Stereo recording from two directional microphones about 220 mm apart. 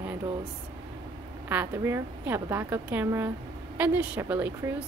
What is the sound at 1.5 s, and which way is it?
Speech, 10° right (ahead or behind).